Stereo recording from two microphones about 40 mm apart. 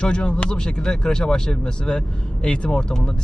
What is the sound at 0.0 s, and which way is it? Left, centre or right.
A man's voice, left.